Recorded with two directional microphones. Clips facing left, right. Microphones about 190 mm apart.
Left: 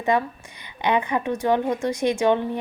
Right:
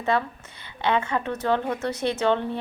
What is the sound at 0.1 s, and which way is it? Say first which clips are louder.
A woman's voice: left 2 dB; 15° left (ahead or behind).